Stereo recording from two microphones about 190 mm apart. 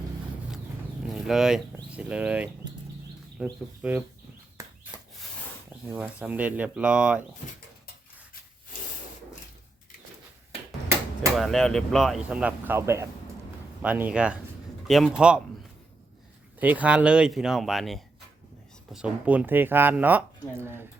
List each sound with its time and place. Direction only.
1.0 s speech: centre (ahead or behind)
4.6 s rub: 15° right (ahead or behind)
5.9 s speech: 10° right (ahead or behind)
11.3 s speech: centre (ahead or behind)
16.6 s speech: 10° right (ahead or behind)